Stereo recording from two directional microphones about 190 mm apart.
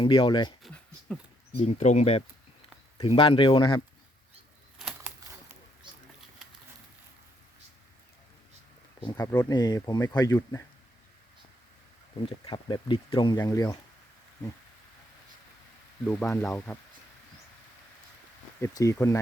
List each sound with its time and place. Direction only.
0.0 s speech: 25° left (ahead or behind)
0.6 s a sound: centre (ahead or behind)
1.5 s speech: 35° left (ahead or behind)
4.8 s a sound: 5° right (ahead or behind)
9.1 s speech: 20° left (ahead or behind)
12.2 s speech: 25° left (ahead or behind)
16.0 s speech: 5° left (ahead or behind)
18.6 s speech: 15° left (ahead or behind)